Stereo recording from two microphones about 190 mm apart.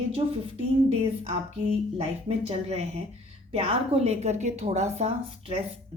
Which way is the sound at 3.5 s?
30° right (ahead or behind).